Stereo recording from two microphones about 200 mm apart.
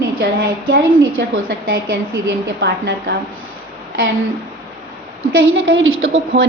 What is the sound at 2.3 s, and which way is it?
Speech, 60° right (ahead or behind).